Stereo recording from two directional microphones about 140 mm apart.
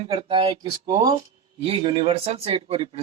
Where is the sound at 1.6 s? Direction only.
40° right (ahead or behind).